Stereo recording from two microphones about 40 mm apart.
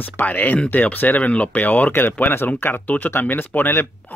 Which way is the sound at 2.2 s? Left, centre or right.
Left.